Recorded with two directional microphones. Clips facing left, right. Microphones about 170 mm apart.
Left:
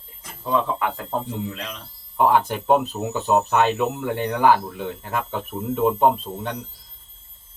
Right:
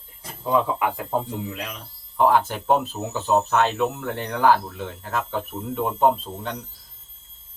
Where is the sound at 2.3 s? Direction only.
10° left (ahead or behind).